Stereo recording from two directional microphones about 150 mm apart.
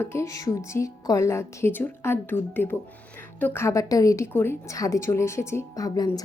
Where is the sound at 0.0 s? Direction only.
15° left (ahead or behind).